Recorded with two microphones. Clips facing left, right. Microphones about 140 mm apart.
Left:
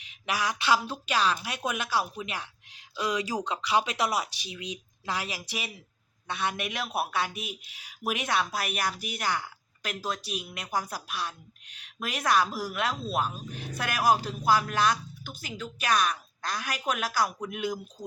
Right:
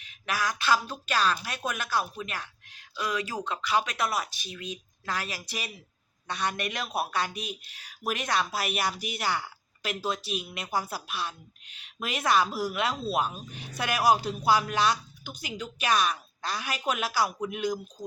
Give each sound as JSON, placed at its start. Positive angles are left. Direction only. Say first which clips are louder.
{"t": 0.3, "sound": "a woman's voice", "louder": "even", "side_deg": 20}